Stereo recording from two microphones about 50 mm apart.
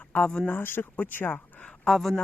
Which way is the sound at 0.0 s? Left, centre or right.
Left.